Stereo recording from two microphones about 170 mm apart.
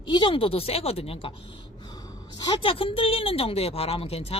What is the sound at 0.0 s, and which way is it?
Speech, 30° left (ahead or behind).